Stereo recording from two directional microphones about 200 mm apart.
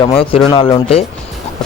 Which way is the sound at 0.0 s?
25° left (ahead or behind).